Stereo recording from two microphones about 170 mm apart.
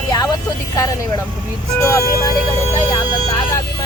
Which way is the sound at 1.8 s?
15° left (ahead or behind).